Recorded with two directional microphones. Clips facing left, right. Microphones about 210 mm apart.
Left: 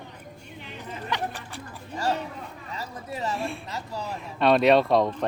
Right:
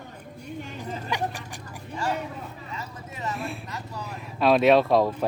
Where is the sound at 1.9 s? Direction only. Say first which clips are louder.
Left 1 dB; 40° left (ahead or behind).